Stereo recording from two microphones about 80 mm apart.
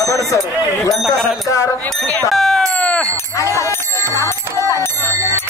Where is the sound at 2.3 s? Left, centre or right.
Centre.